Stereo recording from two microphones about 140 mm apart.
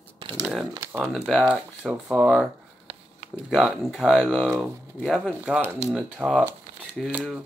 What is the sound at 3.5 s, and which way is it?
Speech, centre (ahead or behind).